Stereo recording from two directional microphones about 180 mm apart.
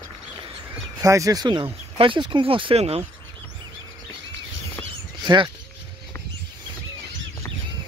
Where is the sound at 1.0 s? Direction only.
20° right (ahead or behind); by 3.1 s 35° right (ahead or behind).